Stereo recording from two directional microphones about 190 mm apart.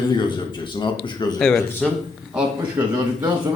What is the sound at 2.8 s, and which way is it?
Speech, 10° right (ahead or behind).